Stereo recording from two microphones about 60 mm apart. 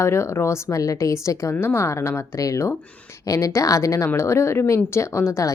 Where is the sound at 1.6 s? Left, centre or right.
Left.